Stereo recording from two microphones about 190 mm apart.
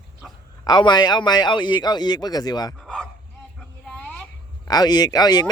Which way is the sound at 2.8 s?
5° left (ahead or behind).